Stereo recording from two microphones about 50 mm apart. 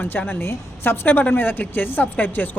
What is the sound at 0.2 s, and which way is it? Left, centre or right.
A woman's voice, left.